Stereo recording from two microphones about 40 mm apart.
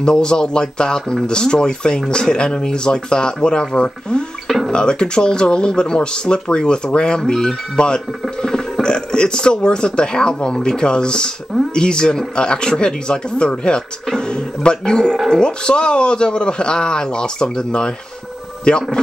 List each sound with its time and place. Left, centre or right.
0.0 s speech: centre